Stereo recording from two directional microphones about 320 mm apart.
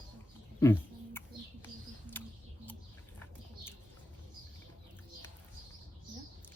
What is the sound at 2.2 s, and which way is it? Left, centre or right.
Music, centre.